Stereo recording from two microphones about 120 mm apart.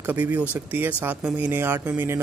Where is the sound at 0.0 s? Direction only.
15° right (ahead or behind).